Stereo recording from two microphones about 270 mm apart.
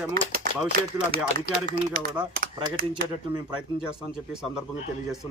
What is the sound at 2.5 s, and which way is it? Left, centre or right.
Speech, right.